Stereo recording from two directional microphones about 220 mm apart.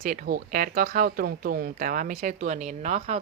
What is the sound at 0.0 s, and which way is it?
Speech, 40° right (ahead or behind).